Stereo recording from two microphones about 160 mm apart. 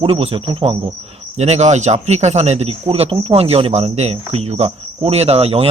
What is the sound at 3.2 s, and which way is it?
Cricket, 40° right (ahead or behind).